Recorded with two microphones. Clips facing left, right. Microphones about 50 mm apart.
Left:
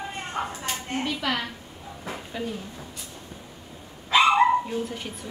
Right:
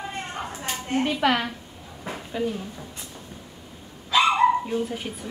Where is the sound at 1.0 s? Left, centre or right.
Right.